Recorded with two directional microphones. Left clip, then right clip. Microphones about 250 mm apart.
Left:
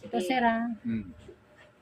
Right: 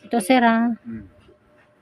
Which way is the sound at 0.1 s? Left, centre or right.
Right.